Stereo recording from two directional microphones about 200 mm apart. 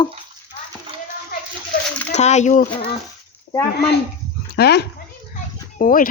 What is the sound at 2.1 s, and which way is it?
Speech, 35° left (ahead or behind).